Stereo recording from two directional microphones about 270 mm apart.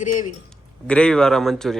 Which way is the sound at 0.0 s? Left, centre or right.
Left.